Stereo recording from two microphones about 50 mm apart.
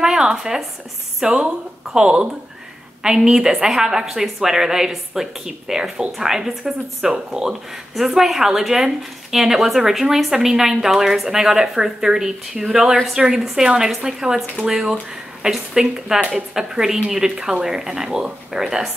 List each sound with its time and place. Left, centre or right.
0.0 s a woman's voice: centre